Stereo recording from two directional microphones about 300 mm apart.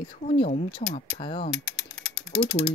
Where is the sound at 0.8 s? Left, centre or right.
Left.